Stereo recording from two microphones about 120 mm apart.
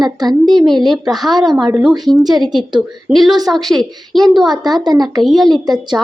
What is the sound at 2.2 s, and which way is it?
Speech, 35° right (ahead or behind).